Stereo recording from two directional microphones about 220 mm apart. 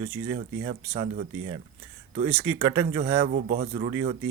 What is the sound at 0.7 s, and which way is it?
Speech, 30° right (ahead or behind).